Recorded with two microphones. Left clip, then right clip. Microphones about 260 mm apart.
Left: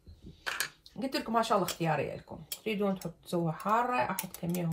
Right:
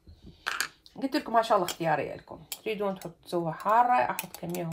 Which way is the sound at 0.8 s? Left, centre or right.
Right.